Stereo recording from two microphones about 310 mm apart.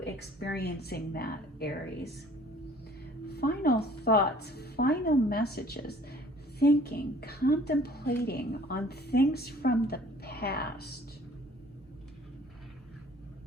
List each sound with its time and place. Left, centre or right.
0.0 s a woman's voice: left
3.2 s a woman's voice: left